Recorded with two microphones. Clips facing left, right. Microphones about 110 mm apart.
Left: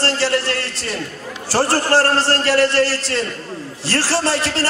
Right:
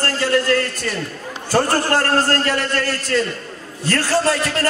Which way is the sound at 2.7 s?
30° left (ahead or behind).